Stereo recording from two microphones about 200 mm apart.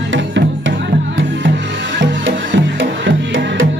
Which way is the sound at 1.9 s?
65° right (ahead or behind).